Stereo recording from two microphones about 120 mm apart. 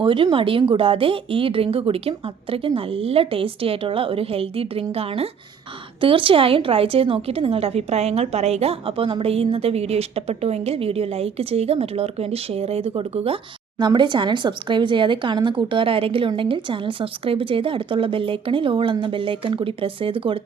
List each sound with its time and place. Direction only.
0.0 s a woman's voice: 45° right (ahead or behind)
13.7 s speech: 40° right (ahead or behind)